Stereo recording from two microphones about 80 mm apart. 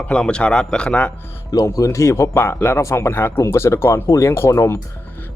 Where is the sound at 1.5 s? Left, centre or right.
Left.